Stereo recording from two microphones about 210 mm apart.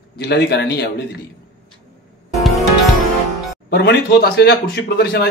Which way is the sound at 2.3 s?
Centre (ahead or behind).